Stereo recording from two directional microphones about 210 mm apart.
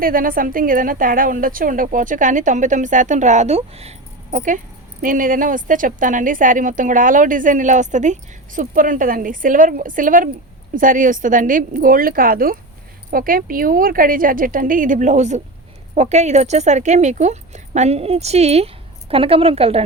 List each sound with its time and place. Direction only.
0.0 s a woman's voice: 40° right (ahead or behind)